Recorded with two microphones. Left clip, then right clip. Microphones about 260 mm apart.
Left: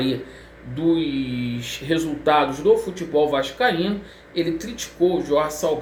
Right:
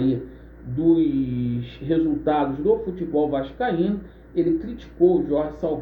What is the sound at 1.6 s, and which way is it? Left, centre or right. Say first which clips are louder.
Speech: right 1 dB; centre.